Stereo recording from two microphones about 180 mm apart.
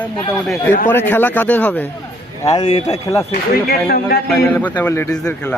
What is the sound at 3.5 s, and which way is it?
Speech, 55° left (ahead or behind).